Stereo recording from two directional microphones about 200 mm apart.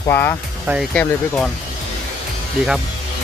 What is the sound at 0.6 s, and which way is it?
Speech, 5° right (ahead or behind).